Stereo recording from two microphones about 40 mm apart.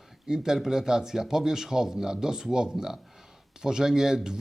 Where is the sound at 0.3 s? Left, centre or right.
Centre.